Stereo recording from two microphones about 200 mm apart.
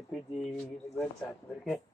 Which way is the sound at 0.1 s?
Centre (ahead or behind).